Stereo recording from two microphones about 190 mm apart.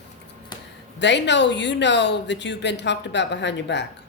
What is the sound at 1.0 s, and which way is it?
Speech, 70° left (ahead or behind).